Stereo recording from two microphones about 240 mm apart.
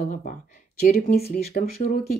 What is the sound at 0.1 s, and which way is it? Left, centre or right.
Speech, left.